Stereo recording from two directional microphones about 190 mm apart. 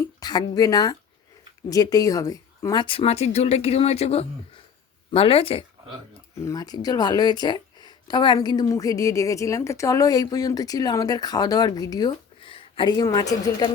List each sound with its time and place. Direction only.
0.0 s a woman's voice: 20° left (ahead or behind)
6.4 s speech: 20° left (ahead or behind)